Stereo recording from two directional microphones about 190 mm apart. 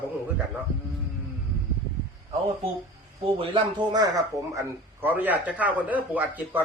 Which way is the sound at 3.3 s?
25° right (ahead or behind).